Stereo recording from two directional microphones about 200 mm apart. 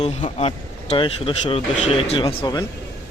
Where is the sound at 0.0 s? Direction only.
30° left (ahead or behind).